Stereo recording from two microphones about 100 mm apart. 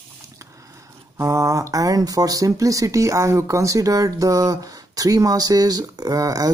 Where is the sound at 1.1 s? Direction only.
30° right (ahead or behind).